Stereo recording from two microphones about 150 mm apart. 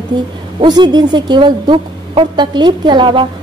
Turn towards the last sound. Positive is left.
turn(degrees=-30)  # may be behind; listen again after turning